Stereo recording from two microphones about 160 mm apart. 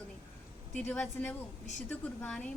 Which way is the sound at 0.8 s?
5° left (ahead or behind).